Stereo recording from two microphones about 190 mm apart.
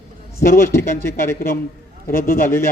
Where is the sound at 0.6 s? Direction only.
15° left (ahead or behind).